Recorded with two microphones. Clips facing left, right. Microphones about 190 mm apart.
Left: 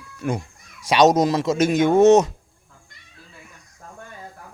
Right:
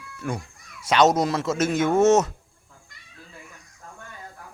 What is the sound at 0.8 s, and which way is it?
Speech, 15° left (ahead or behind).